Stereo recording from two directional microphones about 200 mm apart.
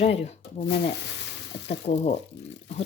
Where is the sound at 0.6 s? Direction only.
55° left (ahead or behind).